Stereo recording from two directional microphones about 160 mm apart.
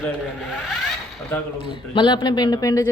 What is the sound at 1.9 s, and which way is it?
Speech, 30° left (ahead or behind).